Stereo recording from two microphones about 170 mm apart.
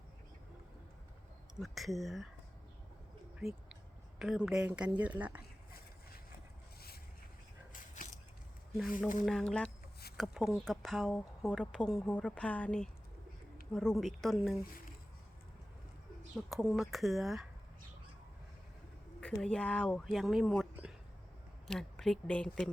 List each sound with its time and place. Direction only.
1.5 s speech: centre (ahead or behind)
3.3 s a sound: 5° right (ahead or behind)
4.2 s speech: 5° right (ahead or behind)
7.7 s a sound: 50° left (ahead or behind)
9.2 s speech: centre (ahead or behind)
16.5 s speech: centre (ahead or behind)
19.2 s speech: 5° left (ahead or behind)
21.7 s speech: 5° left (ahead or behind)